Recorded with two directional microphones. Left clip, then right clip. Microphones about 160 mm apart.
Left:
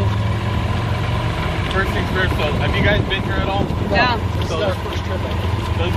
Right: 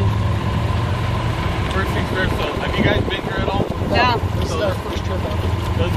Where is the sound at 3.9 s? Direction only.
20° right (ahead or behind).